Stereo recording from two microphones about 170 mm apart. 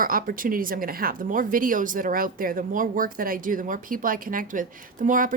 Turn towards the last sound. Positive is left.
turn(degrees=-50)  # may be behind; listen again after turning